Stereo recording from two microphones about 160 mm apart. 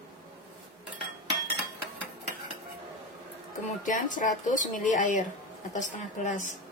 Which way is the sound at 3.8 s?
55° left (ahead or behind).